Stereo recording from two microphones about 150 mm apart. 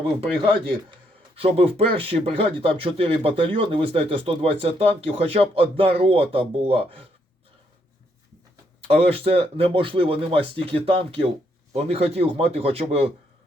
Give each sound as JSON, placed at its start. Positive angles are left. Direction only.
{"t": 1.4, "sound": "speech", "side_deg": -40}
{"t": 9.0, "sound": "speech", "side_deg": -40}